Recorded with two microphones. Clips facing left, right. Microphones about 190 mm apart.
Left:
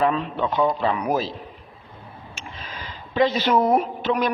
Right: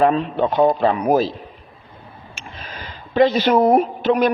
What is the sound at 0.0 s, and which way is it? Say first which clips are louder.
A man's voice: right 5 dB; 50° right (ahead or behind).